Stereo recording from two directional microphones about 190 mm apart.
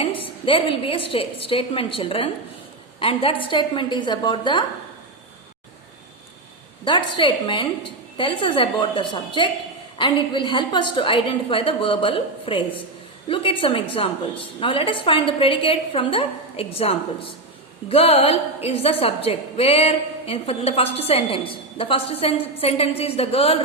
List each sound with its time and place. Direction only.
0.0 s a woman's voice: 30° left (ahead or behind)
6.8 s a woman's voice: 25° left (ahead or behind)